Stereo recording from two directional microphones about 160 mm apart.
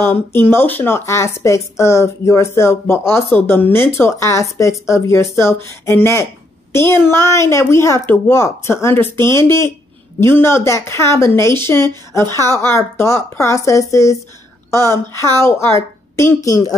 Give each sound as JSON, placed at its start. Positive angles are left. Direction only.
{"t": 0.0, "sound": "a woman's voice", "side_deg": 15}